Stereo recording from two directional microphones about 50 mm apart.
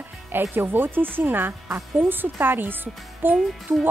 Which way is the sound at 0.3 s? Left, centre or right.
Right.